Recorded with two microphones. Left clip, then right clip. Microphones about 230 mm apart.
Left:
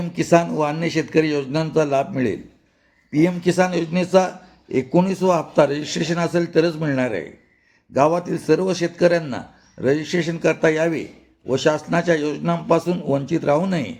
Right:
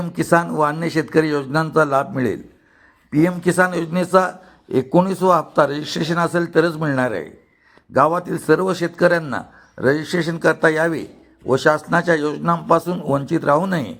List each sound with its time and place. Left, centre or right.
0.0 s a man's voice: centre